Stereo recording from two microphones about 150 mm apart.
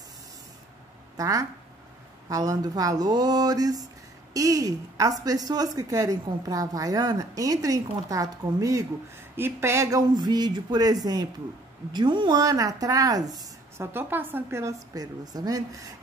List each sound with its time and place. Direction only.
1.1 s speech: 20° right (ahead or behind)